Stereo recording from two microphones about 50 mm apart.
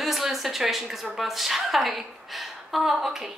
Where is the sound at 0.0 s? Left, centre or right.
Centre.